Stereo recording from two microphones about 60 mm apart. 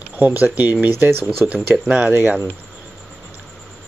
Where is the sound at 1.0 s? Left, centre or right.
Right.